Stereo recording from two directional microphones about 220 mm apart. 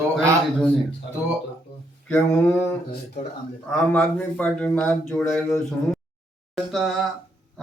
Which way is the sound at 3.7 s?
5° left (ahead or behind).